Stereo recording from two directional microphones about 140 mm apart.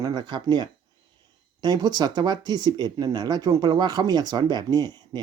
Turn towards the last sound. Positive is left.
turn(degrees=-30)  # may be behind; listen again after turning